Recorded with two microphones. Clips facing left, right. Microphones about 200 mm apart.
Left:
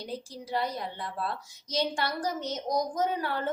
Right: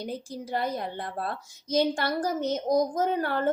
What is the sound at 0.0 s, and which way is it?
A woman's voice, 55° right (ahead or behind).